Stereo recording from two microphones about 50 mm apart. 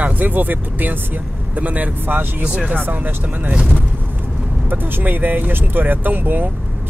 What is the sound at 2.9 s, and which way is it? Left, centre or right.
Speech, right.